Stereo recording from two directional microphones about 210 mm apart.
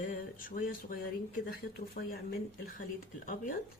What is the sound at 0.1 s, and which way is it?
Speech, 40° left (ahead or behind).